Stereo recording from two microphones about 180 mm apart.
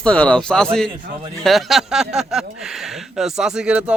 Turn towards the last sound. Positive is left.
turn(degrees=-5)  # may be behind; listen again after turning